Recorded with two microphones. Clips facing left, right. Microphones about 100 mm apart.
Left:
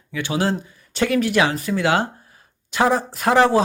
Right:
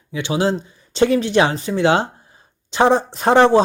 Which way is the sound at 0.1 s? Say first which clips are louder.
Right 3 dB; 20° right (ahead or behind).